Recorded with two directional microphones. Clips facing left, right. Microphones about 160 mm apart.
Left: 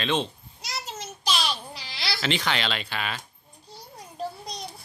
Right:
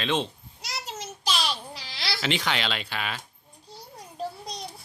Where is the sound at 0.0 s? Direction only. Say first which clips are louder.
Left 1 dB; 5° right (ahead or behind).